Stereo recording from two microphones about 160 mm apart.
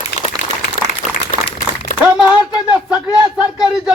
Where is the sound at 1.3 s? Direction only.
55° left (ahead or behind).